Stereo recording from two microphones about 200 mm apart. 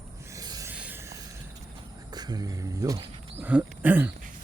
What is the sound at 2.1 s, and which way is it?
Speech, 20° right (ahead or behind).